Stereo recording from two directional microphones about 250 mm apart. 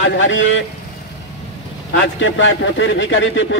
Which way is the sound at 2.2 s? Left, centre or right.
Left.